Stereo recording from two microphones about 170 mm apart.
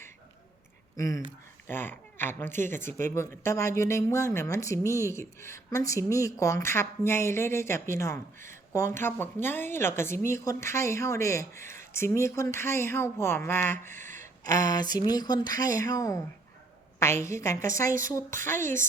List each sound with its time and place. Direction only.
0.9 s speech: 20° left (ahead or behind)
13.8 s speech: 45° right (ahead or behind)
14.2 s speech: 20° left (ahead or behind)
18.5 s a woman's voice: 50° right (ahead or behind)